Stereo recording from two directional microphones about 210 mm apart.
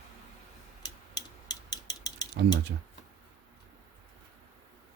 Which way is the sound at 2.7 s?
50° right (ahead or behind).